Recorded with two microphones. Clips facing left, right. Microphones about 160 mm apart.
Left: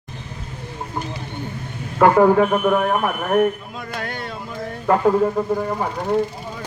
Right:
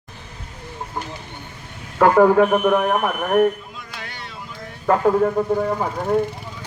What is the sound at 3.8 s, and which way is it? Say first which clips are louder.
Music: left 7 dB; 50° left (ahead or behind).